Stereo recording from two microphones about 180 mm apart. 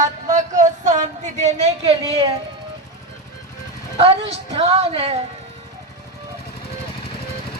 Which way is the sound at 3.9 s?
35° right (ahead or behind).